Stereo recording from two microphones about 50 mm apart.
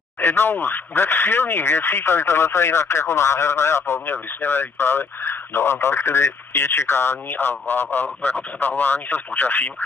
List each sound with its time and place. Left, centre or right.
0.2 s speech: left
8.2 s speech: left